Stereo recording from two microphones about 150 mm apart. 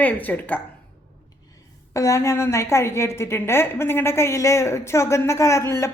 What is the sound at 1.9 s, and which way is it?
A woman's voice, 20° left (ahead or behind).